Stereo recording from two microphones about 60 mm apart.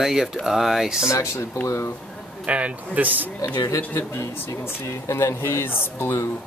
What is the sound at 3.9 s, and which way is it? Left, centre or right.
Speech, left.